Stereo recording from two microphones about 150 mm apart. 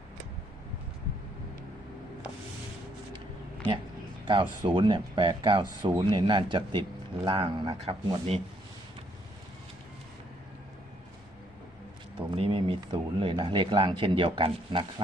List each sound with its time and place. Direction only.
4.3 s speech: 30° right (ahead or behind)
7.8 s speech: 40° right (ahead or behind)
12.4 s speech: 35° right (ahead or behind)